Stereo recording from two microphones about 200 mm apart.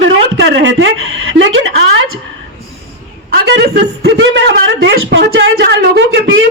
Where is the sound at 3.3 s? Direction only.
55° right (ahead or behind).